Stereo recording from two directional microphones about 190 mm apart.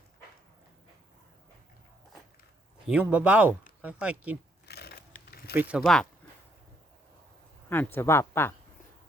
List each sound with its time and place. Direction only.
2.8 s speech: 5° right (ahead or behind)
4.6 s a sound: 55° left (ahead or behind)
5.5 s speech: 5° right (ahead or behind)
7.9 s speech: 15° left (ahead or behind)